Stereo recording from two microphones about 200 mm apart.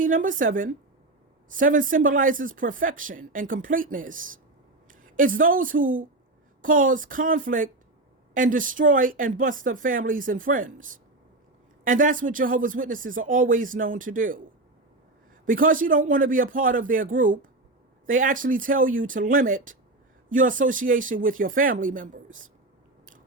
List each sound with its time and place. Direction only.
0.0 s speech: 40° right (ahead or behind)
15.4 s speech: 45° right (ahead or behind)